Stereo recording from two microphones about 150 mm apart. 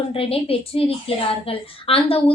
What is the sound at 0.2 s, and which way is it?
A woman's voice, 40° left (ahead or behind).